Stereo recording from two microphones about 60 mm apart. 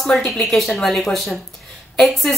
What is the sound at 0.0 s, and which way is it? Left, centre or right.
A woman's voice, centre.